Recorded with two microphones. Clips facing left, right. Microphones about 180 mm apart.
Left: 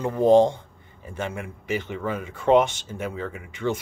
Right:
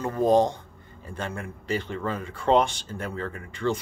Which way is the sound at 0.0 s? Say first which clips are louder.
Left 4 dB; 15° left (ahead or behind).